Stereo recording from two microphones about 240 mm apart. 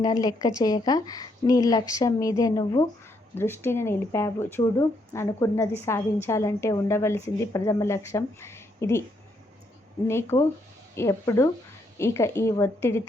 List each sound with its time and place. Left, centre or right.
0.0 s a woman's voice: centre
10.1 s a woman's voice: centre